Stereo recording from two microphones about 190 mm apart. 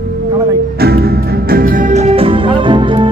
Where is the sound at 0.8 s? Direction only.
55° right (ahead or behind).